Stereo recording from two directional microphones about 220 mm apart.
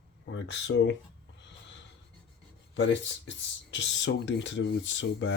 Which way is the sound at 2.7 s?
55° left (ahead or behind).